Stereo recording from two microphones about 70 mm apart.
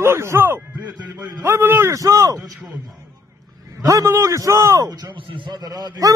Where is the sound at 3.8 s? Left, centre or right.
Right.